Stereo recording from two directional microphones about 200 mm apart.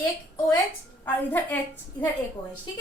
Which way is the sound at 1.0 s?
10° left (ahead or behind).